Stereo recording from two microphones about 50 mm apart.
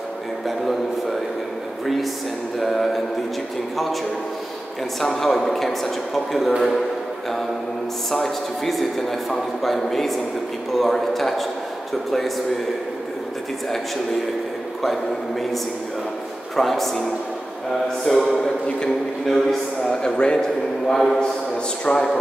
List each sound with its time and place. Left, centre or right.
2.6 s a man's voice: centre
5.0 s a man's voice: centre
8.1 s a man's voice: centre
16.5 s a man's voice: centre
18.0 s speech: centre
20.9 s speech: centre